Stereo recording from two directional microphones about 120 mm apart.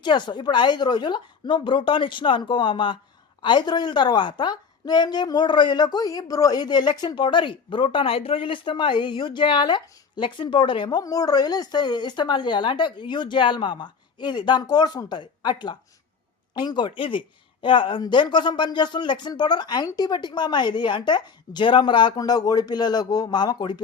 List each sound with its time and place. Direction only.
0.0 s a woman's voice: 40° left (ahead or behind)